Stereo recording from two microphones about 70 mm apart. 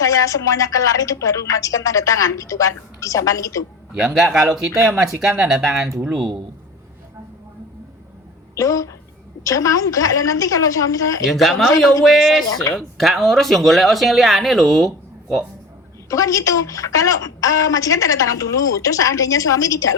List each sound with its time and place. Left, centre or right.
0.0 s a woman's voice: left
4.0 s speech: centre
8.5 s a woman's voice: left
11.3 s speech: centre
16.0 s a woman's voice: left